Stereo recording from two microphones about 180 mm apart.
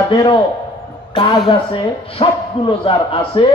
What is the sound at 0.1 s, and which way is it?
Speech, 30° left (ahead or behind).